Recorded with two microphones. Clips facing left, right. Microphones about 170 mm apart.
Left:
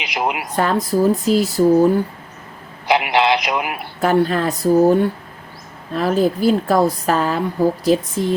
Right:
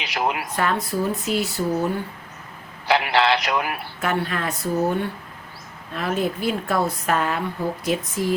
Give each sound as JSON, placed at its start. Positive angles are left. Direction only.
{"t": 0.0, "sound": "speech", "side_deg": 15}
{"t": 0.5, "sound": "a woman's voice", "side_deg": 35}
{"t": 2.8, "sound": "a man's voice", "side_deg": 15}
{"t": 4.0, "sound": "a woman's voice", "side_deg": 35}